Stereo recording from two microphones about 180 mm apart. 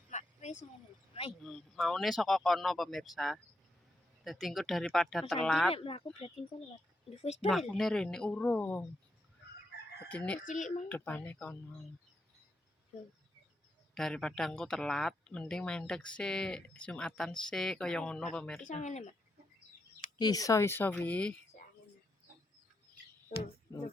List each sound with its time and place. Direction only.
0.1 s a sound: 40° left (ahead or behind)
1.4 s speech: centre (ahead or behind)
5.7 s speech: 30° left (ahead or behind)
7.4 s speech: centre (ahead or behind)
10.1 s speech: 5° left (ahead or behind)
10.4 s speech: 45° left (ahead or behind)
10.8 s speech: 10° left (ahead or behind)
13.9 s speech: 5° left (ahead or behind)
18.6 s speech: 45° left (ahead or behind)
20.1 s speech: 20° left (ahead or behind)